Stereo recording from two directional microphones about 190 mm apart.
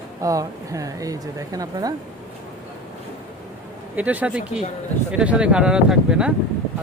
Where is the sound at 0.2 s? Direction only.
15° right (ahead or behind).